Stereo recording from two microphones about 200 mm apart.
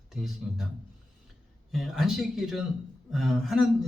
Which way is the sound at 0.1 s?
Centre (ahead or behind).